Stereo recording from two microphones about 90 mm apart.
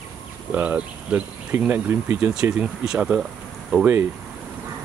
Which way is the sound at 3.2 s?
5° right (ahead or behind).